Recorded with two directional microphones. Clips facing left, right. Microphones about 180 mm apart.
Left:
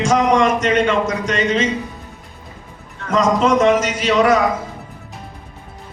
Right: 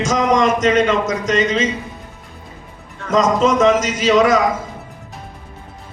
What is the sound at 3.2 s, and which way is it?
Speech, 35° left (ahead or behind).